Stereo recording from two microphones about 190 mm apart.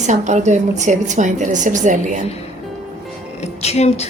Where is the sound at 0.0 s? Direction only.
40° right (ahead or behind).